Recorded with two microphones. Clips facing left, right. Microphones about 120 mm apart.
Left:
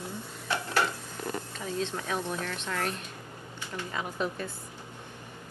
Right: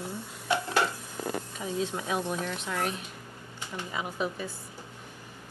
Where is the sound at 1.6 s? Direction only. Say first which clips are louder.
Right 1 dB; 10° right (ahead or behind).